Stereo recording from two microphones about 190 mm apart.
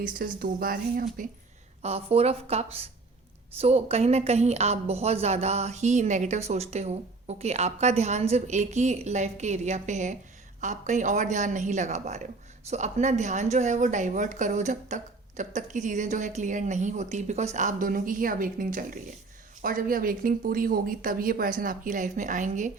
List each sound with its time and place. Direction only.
0.0 s speech: 45° right (ahead or behind)
1.8 s speech: 35° right (ahead or behind)